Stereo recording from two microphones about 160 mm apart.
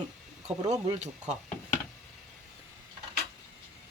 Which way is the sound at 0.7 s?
45° right (ahead or behind).